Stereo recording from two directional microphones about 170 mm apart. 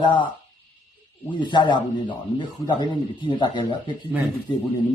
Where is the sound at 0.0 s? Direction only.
25° left (ahead or behind).